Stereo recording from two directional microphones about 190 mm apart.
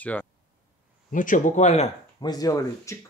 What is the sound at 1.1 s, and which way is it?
Speech, 45° left (ahead or behind).